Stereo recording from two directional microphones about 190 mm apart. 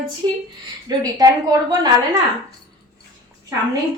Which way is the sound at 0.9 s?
20° right (ahead or behind).